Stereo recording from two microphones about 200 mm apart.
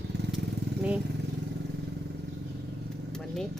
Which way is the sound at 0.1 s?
55° right (ahead or behind).